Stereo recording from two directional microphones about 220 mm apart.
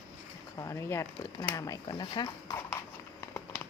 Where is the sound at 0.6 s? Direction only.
15° left (ahead or behind).